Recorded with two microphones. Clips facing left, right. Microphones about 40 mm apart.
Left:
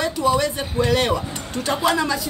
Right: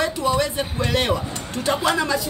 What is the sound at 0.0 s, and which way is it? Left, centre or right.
Speech, centre.